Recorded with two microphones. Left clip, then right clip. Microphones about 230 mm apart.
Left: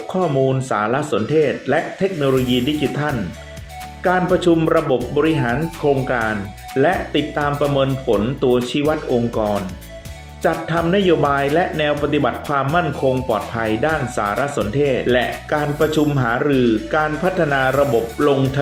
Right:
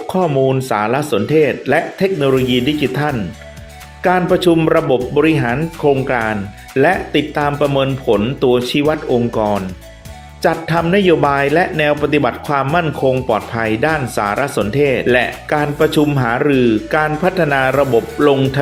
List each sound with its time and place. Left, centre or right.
0.1 s speech: right